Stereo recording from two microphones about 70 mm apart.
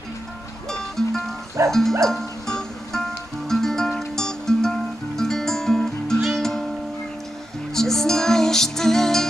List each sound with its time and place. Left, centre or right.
0.7 s music: centre
7.7 s music: centre